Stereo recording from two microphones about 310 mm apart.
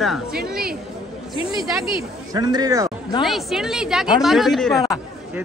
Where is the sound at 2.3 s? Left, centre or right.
Centre.